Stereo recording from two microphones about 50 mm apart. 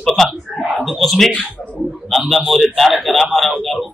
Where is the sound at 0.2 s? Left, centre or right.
Centre.